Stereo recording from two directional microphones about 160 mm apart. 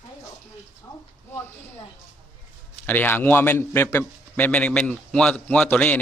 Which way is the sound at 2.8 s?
10° left (ahead or behind).